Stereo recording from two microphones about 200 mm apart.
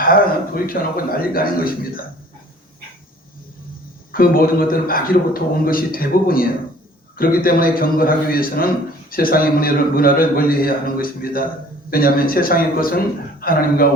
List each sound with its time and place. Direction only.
0.0 s a man's voice: 45° left (ahead or behind)
4.1 s a man's voice: 45° left (ahead or behind)